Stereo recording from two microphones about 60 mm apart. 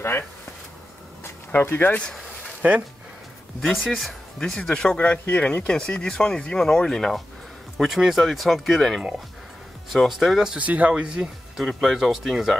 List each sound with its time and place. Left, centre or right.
1.2 s a sound: left
2.6 s speech: right
3.7 s speech: centre
4.6 s speech: centre
10.6 s speech: right
11.5 s speech: centre